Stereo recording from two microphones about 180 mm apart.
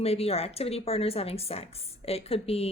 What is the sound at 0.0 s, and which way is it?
A woman's voice, 35° left (ahead or behind).